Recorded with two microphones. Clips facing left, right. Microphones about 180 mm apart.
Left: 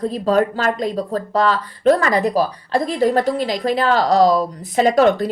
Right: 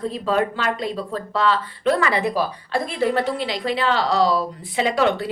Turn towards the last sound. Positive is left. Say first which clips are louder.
# left 6 dB
turn(degrees=45)  # may be behind; listen again after turning